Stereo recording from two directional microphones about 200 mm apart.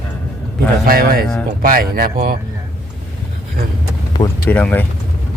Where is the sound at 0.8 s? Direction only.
45° right (ahead or behind).